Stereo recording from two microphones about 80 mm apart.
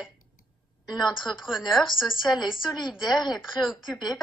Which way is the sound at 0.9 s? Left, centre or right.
Left.